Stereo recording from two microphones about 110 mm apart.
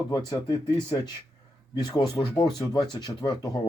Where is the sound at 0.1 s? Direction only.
35° left (ahead or behind).